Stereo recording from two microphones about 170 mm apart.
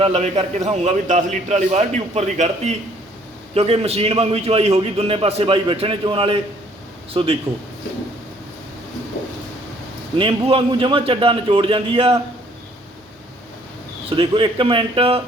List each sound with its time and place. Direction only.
0.0 s a man's voice: 40° right (ahead or behind)
10.2 s a man's voice: 35° right (ahead or behind)
14.2 s a man's voice: 30° right (ahead or behind)